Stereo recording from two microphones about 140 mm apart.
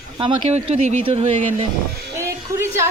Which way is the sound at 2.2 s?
20° right (ahead or behind).